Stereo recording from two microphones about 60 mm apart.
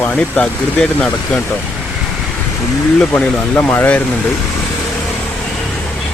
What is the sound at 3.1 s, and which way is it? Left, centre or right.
Speech, left.